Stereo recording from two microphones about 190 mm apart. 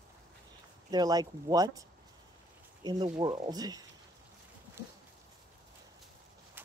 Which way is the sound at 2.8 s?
25° right (ahead or behind).